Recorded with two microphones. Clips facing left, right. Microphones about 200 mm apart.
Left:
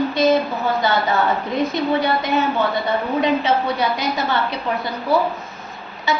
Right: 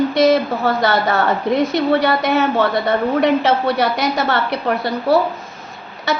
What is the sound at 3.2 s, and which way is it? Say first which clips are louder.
A woman's voice: right 1 dB; 75° right (ahead or behind).